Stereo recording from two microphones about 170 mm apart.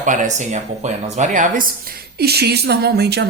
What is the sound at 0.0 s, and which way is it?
Speech, 50° right (ahead or behind).